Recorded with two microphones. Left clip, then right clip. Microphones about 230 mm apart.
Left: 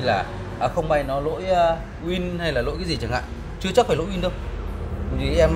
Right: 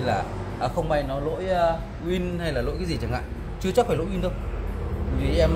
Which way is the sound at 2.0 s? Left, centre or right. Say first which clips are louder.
Left 2 dB; left.